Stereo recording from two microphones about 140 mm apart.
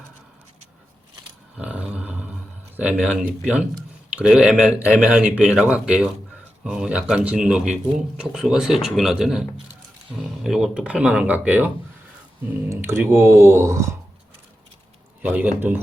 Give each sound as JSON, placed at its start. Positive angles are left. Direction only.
{"t": 1.5, "sound": "a sound", "side_deg": -5}
{"t": 3.0, "sound": "speech", "side_deg": 0}
{"t": 15.2, "sound": "speech", "side_deg": -10}